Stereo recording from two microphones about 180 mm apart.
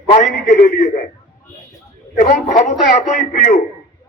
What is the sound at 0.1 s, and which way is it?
Speech, 40° left (ahead or behind).